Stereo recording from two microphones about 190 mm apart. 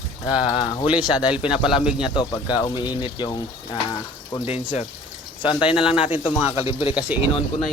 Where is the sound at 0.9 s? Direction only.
5° right (ahead or behind).